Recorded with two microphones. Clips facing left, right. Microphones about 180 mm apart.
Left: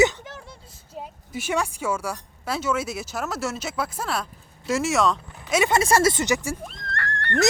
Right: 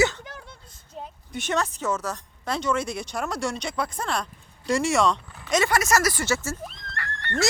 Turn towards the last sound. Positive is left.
turn(degrees=-5)  # may be behind; listen again after turning